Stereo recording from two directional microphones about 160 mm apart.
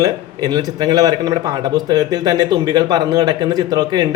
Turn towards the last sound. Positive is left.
turn(degrees=-25)  # may be behind; listen again after turning